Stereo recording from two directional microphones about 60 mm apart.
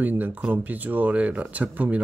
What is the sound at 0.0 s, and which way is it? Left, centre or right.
Speech, right.